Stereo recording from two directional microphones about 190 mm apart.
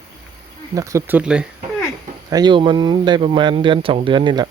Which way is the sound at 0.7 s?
15° right (ahead or behind).